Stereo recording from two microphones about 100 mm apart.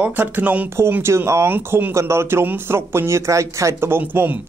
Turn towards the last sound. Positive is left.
turn(degrees=-25)  # may be behind; listen again after turning